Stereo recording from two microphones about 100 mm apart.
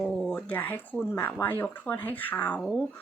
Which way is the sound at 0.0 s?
5° left (ahead or behind).